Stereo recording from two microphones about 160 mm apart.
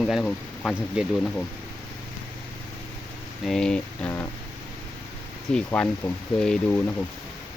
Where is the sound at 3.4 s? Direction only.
5° left (ahead or behind).